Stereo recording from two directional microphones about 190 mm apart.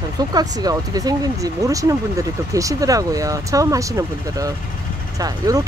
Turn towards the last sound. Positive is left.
turn(degrees=-20)  # may be behind; listen again after turning